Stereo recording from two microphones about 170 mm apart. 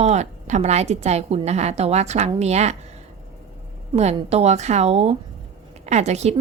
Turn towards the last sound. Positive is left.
turn(degrees=-40)  # may be behind; listen again after turning